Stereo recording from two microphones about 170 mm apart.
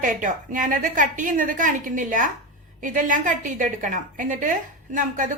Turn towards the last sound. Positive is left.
turn(degrees=-50)  # may be behind; listen again after turning